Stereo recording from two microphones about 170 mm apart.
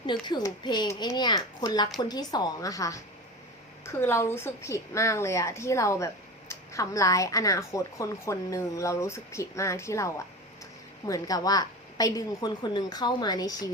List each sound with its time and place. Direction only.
0.0 s a woman's voice: 25° left (ahead or behind)